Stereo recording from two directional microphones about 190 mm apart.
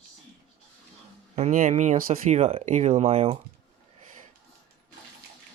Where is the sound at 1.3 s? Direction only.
40° right (ahead or behind).